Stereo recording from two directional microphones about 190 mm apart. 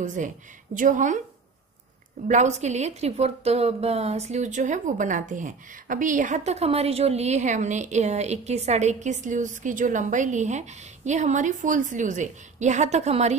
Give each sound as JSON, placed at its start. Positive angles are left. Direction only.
{"t": 0.0, "sound": "a woman's voice", "side_deg": -40}
{"t": 2.2, "sound": "a woman's voice", "side_deg": -40}